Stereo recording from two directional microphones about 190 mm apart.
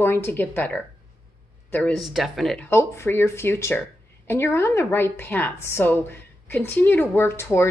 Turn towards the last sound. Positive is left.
turn(degrees=15)  # may be behind; listen again after turning